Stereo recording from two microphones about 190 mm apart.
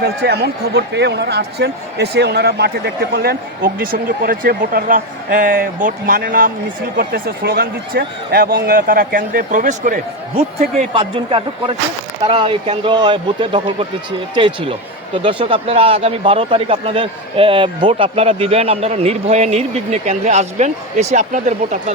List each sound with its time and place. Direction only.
0.0 s speech: 60° right (ahead or behind)
6.9 s a man's voice: 60° right (ahead or behind); by 21.9 s 40° right (ahead or behind)